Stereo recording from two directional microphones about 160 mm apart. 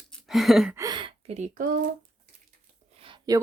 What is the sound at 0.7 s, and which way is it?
Speech, 25° right (ahead or behind).